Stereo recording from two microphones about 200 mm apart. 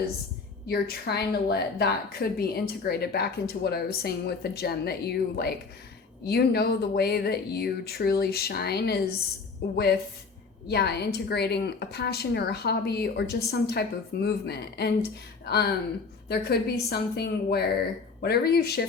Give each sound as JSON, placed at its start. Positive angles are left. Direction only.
{"t": 0.7, "sound": "a woman's voice", "side_deg": 55}